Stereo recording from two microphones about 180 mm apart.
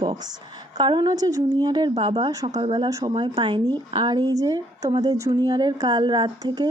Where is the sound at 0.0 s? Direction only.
25° right (ahead or behind).